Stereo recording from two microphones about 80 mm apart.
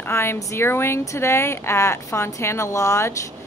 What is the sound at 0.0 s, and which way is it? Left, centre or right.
A woman's voice, left.